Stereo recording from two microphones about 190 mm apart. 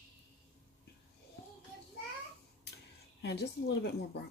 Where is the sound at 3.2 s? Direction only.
60° left (ahead or behind).